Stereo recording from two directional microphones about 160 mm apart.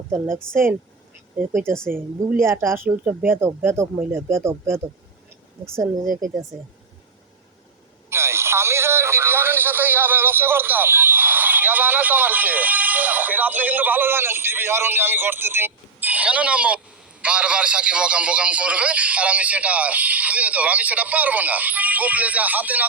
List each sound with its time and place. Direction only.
0.5 s speech: 15° right (ahead or behind)
2.4 s speech: 15° right (ahead or behind)
6.1 s speech: 55° right (ahead or behind)
8.1 s a sound: 15° right (ahead or behind)